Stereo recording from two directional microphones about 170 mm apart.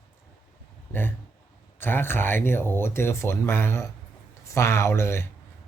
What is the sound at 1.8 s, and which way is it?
Speech, 10° left (ahead or behind).